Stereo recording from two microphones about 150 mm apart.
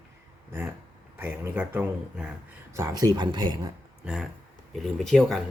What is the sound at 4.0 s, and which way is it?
Speech, 5° right (ahead or behind).